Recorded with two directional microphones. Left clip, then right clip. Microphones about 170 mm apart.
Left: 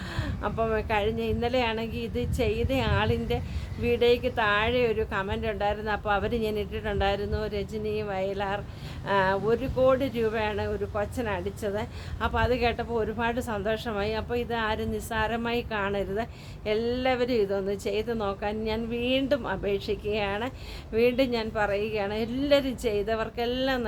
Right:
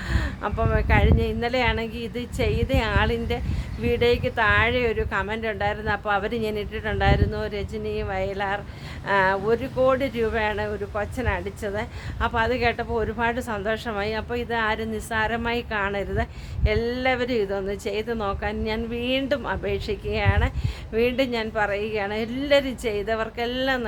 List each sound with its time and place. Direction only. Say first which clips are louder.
0.1 s speech: right 3 dB; 10° right (ahead or behind)